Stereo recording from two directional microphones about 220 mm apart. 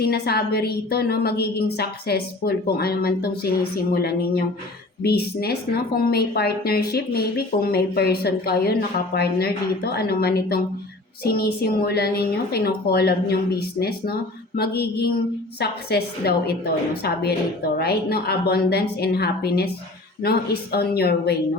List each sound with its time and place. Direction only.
0.0 s a woman's voice: 45° left (ahead or behind)